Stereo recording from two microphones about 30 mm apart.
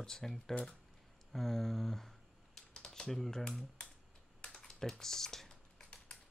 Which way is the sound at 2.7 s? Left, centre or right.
Left.